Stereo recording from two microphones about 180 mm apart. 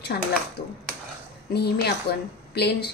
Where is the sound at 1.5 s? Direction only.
65° left (ahead or behind).